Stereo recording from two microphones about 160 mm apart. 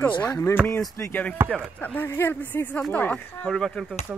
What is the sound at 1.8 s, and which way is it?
Speech, 10° left (ahead or behind).